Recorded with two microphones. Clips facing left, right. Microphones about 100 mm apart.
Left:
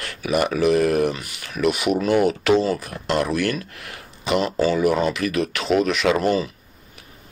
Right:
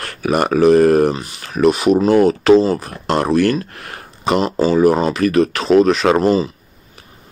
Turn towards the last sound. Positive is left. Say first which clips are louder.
# right 5 dB
turn(degrees=-30)  # may be behind; listen again after turning